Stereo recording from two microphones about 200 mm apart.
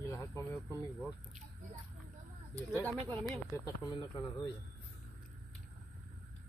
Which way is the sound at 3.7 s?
20° left (ahead or behind).